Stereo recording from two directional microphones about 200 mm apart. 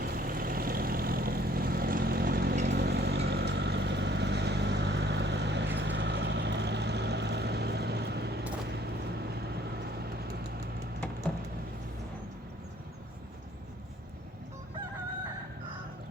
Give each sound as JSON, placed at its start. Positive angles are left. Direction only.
{"t": 0.0, "sound": "vehicle", "side_deg": -50}